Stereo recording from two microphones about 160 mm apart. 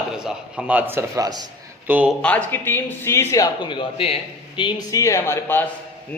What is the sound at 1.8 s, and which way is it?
Speech, 10° right (ahead or behind).